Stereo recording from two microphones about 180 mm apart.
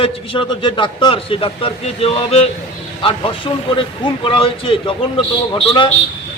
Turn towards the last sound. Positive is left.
turn(degrees=30)  # may be behind; listen again after turning